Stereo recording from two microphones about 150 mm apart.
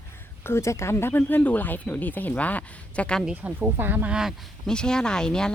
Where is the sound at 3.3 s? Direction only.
5° right (ahead or behind).